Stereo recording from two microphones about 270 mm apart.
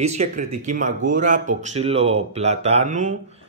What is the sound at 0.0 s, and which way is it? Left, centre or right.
Speech, right.